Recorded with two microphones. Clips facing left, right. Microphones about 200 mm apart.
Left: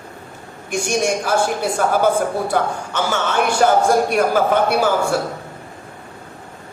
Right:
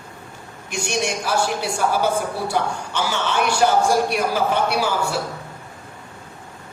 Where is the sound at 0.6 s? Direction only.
50° left (ahead or behind).